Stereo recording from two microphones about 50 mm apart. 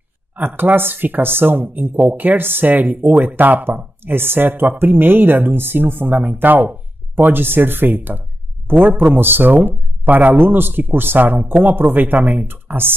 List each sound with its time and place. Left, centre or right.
0.4 s a man's voice: right